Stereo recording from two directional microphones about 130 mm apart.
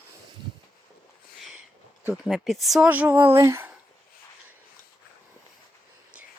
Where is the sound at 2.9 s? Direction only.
10° right (ahead or behind).